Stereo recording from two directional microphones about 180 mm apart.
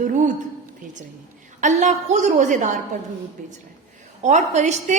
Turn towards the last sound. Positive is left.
turn(degrees=-40)  # may be behind; listen again after turning